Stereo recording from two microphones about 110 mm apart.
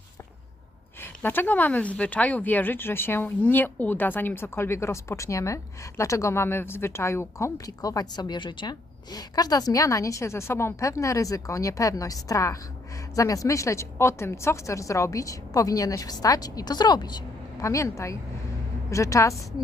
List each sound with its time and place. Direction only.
1.0 s a woman's voice: 20° left (ahead or behind)